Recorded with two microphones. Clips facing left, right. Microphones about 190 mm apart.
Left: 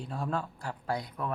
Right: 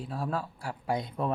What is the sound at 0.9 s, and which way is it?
Speech, 25° right (ahead or behind).